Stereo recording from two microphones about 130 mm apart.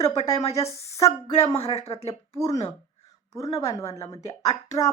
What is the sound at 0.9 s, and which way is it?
Speech, 25° left (ahead or behind).